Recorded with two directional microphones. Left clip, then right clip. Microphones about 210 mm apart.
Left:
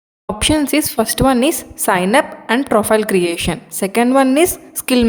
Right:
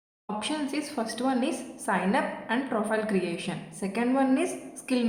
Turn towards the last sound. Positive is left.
turn(degrees=55)  # may be behind; listen again after turning